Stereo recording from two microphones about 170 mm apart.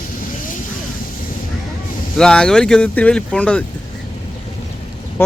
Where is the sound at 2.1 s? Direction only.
5° left (ahead or behind).